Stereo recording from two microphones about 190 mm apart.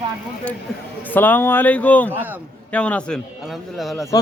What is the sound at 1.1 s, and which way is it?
Speech, 10° left (ahead or behind).